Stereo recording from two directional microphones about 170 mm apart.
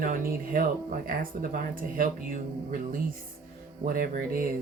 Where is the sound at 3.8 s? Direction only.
55° right (ahead or behind).